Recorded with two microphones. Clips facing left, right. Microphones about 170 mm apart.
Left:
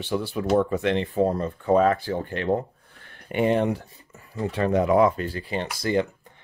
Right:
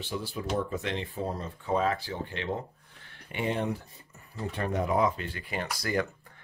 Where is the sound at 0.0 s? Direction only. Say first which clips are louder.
Left 8 dB; 65° left (ahead or behind).